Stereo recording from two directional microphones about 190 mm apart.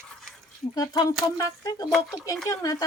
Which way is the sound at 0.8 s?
20° left (ahead or behind).